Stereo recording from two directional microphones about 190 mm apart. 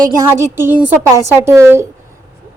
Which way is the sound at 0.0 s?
15° right (ahead or behind).